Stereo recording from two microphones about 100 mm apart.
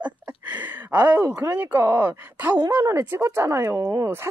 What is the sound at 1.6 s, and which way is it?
Speech, 15° right (ahead or behind).